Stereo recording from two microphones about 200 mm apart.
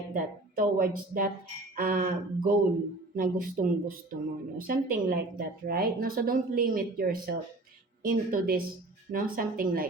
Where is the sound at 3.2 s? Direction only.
45° right (ahead or behind).